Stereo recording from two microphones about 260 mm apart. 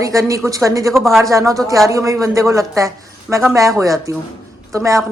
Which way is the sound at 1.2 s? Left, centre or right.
Centre.